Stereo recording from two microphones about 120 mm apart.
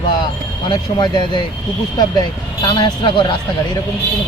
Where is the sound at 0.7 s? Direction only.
40° left (ahead or behind).